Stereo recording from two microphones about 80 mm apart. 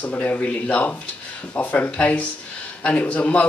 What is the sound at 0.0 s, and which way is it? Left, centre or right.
A man's voice, centre.